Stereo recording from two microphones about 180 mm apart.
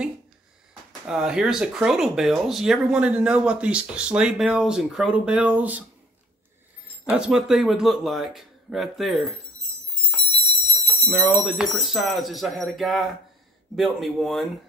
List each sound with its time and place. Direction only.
1.0 s speech: 5° right (ahead or behind)
7.1 s speech: 5° right (ahead or behind)
10.0 s clock: centre (ahead or behind)
11.1 s speech: centre (ahead or behind)